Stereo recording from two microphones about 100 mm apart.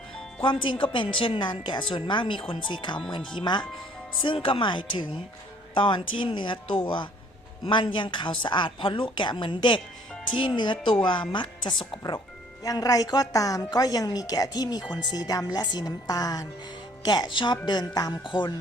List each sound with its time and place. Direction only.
0.4 s a woman's voice: 55° left (ahead or behind)
12.6 s a woman's voice: 35° left (ahead or behind)